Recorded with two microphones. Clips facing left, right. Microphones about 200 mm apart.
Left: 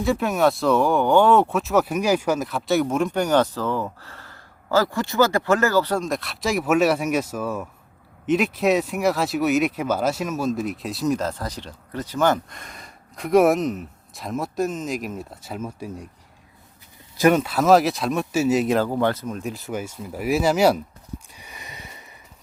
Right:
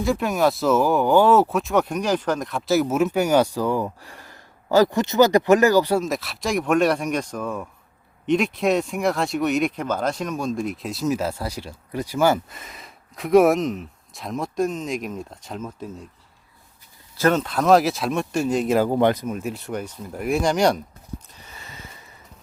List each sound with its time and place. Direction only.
0.0 s speech: centre (ahead or behind)
17.2 s speech: 10° left (ahead or behind)
18.9 s speech: 20° right (ahead or behind)
19.4 s speech: centre (ahead or behind)
21.3 s a sound: 15° left (ahead or behind)